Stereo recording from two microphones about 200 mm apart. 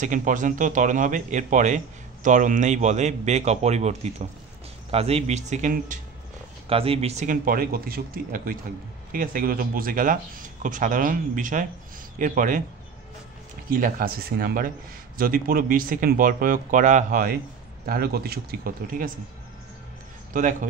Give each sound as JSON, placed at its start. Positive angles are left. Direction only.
{"t": 0.0, "sound": "a man's voice", "side_deg": -40}
{"t": 6.7, "sound": "a man's voice", "side_deg": -30}
{"t": 13.7, "sound": "speech", "side_deg": -45}
{"t": 20.3, "sound": "a man's voice", "side_deg": -40}